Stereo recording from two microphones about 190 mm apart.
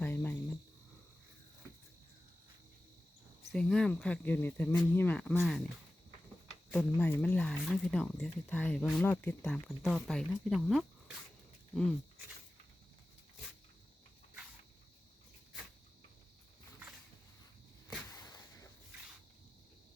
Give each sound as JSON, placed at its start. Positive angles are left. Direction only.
{"t": 0.0, "sound": "cricket", "side_deg": 10}
{"t": 3.5, "sound": "speech", "side_deg": 5}
{"t": 6.9, "sound": "speech", "side_deg": 10}
{"t": 18.1, "sound": "a sound", "side_deg": 20}